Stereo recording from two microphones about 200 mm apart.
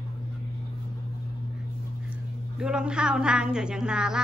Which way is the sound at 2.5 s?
5° right (ahead or behind).